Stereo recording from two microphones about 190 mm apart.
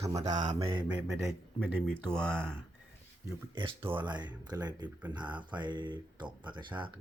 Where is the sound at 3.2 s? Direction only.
25° right (ahead or behind).